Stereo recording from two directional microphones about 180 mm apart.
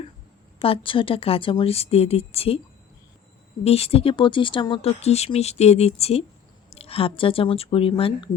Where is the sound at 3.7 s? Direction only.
35° left (ahead or behind).